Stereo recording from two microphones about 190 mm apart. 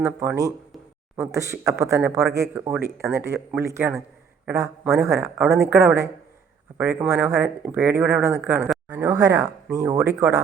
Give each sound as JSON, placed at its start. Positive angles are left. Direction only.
{"t": 0.2, "sound": "speech", "side_deg": -15}